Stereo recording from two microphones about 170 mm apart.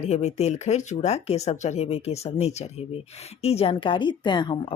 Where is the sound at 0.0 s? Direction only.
40° left (ahead or behind).